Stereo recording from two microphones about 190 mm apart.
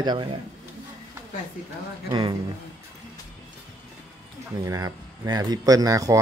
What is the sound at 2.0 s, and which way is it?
Speech, 25° right (ahead or behind).